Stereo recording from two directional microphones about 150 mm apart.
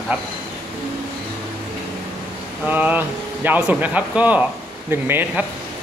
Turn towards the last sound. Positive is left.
turn(degrees=-15)  # may be behind; listen again after turning